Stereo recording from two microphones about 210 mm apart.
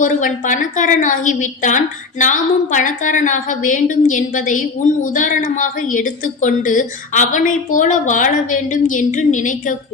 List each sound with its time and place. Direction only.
0.0 s a woman's voice: 40° left (ahead or behind)